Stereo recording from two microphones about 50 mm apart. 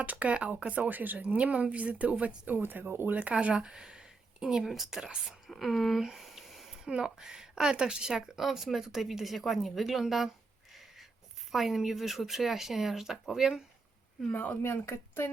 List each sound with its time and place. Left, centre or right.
0.0 s a woman's voice: right
2.5 s speech: right
3.4 s speech: centre
6.0 s a sound: centre
6.8 s speech: centre
11.5 s speech: centre
14.3 s speech: left
14.6 s speech: left